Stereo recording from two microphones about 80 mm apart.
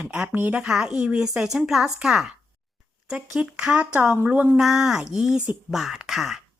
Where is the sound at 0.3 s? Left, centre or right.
Right.